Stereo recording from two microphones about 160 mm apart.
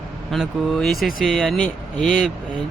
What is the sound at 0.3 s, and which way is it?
Speech, centre (ahead or behind).